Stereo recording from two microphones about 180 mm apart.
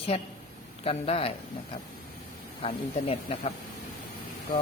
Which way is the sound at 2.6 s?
35° left (ahead or behind).